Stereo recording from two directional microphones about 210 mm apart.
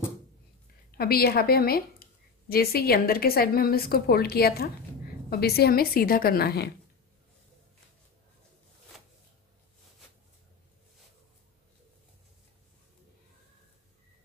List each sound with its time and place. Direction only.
0.9 s a woman's voice: 45° left (ahead or behind)